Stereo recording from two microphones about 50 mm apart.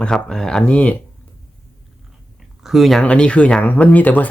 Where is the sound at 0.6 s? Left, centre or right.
Left.